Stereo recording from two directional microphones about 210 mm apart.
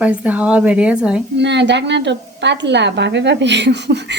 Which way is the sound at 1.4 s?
55° right (ahead or behind).